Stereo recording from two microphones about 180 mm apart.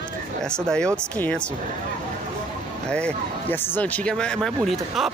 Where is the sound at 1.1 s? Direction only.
10° left (ahead or behind).